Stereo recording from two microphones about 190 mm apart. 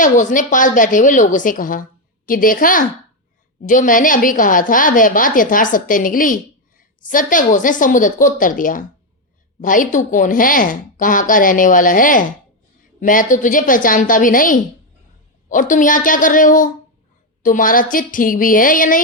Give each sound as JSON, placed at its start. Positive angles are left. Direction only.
{"t": 0.0, "sound": "a woman's voice", "side_deg": 45}